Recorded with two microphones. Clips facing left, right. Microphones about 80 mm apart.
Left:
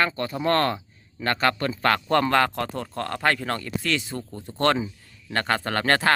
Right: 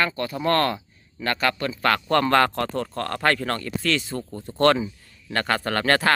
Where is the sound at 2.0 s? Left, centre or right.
Centre.